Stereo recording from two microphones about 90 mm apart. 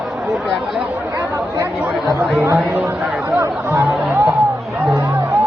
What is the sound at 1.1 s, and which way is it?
Chatter, 35° right (ahead or behind).